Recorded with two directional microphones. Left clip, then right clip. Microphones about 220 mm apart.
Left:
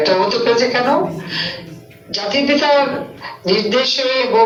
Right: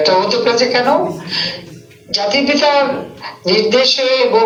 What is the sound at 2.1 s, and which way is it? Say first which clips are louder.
Speech: right 2 dB; 50° right (ahead or behind).